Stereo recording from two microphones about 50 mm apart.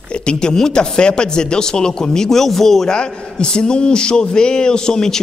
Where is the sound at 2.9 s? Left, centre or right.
Centre.